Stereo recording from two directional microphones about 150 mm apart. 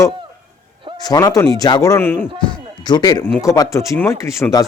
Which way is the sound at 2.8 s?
30° left (ahead or behind).